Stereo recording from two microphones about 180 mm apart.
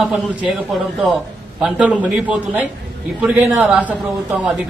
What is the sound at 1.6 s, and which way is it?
A man's voice, 5° right (ahead or behind).